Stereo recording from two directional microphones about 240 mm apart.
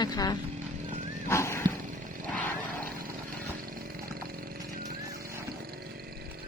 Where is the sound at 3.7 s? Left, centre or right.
Right.